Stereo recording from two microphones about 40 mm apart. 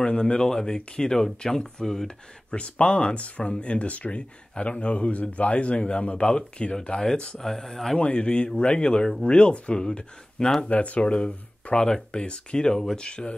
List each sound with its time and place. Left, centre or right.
0.0 s speech: left
2.5 s speech: left; by 8.0 s centre
8.0 s speech: left
10.7 s speech: left